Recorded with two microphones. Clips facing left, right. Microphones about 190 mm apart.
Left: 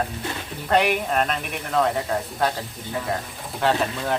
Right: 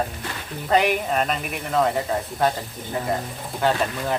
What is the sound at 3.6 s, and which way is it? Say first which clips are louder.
Speech: even; centre (ahead or behind).